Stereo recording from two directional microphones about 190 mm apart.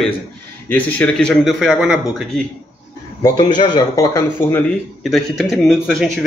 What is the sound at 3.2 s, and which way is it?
Speech, 20° left (ahead or behind).